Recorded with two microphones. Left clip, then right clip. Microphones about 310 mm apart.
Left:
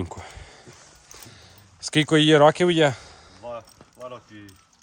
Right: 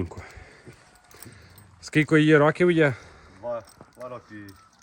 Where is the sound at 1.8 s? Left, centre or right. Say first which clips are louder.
Left 1 dB; centre.